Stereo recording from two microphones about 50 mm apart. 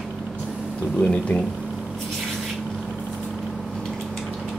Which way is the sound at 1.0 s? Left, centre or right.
Left.